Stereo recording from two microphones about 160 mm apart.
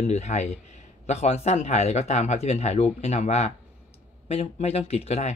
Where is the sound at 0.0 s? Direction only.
45° left (ahead or behind).